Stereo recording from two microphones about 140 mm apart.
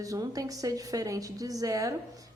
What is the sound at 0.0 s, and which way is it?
A woman's voice, 25° right (ahead or behind).